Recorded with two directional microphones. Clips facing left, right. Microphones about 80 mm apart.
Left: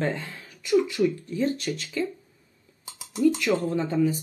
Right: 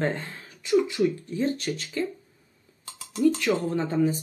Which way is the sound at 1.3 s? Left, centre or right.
Right.